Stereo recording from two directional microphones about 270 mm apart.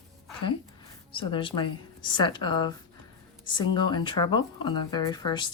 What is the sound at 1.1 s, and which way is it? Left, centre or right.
Speech, centre.